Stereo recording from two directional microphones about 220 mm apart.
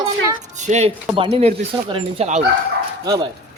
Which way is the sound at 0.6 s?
30° right (ahead or behind).